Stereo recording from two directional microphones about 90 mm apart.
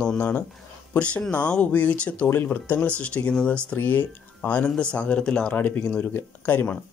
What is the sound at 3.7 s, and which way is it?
Speech, 25° left (ahead or behind).